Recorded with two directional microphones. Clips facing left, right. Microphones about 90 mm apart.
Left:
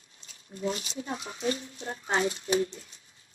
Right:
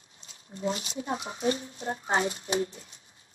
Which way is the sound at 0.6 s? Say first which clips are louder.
Right 1 dB; 25° right (ahead or behind).